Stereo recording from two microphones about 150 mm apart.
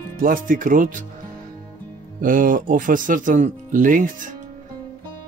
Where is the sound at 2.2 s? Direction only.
65° right (ahead or behind).